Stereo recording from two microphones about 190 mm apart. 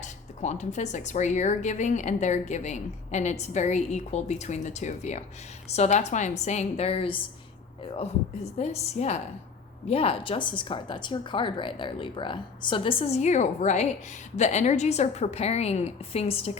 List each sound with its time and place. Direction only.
0.0 s a woman's voice: 40° left (ahead or behind)